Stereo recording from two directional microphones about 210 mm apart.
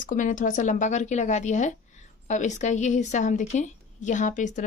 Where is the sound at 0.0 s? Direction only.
40° left (ahead or behind).